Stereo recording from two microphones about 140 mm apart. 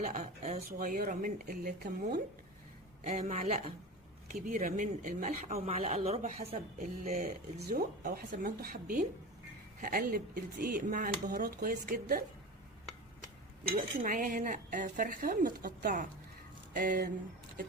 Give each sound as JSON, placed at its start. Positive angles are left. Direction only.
{"t": 0.0, "sound": "speech", "side_deg": -55}
{"t": 0.7, "sound": "a man's voice", "side_deg": -80}
{"t": 5.5, "sound": "a man's voice", "side_deg": -45}
{"t": 7.3, "sound": "speech", "side_deg": -90}
{"t": 13.7, "sound": "speech", "side_deg": -75}